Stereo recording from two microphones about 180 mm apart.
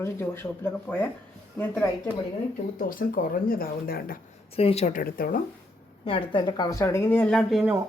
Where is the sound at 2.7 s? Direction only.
50° left (ahead or behind).